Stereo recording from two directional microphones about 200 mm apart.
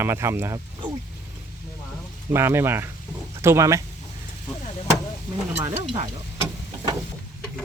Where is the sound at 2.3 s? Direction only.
10° right (ahead or behind).